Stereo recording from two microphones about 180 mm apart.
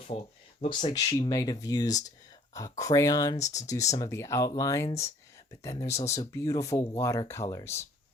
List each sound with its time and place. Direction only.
0.1 s speech: 35° left (ahead or behind)
0.9 s speech: 25° left (ahead or behind)